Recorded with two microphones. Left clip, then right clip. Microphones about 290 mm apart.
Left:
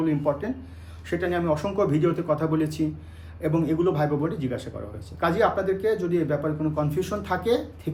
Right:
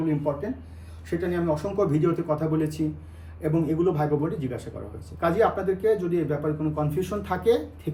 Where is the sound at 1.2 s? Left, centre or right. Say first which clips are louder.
Left 2 dB; centre.